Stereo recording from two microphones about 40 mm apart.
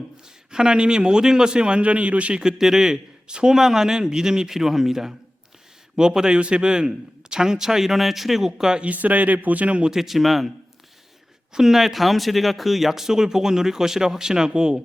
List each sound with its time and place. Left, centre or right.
0.5 s speech: right
2.6 s a man's voice: centre
3.5 s speech: centre
8.8 s a man's voice: right
9.9 s speech: centre
11.5 s speech: centre